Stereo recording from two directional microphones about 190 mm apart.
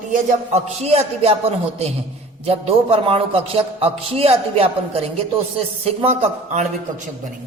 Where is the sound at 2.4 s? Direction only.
30° right (ahead or behind).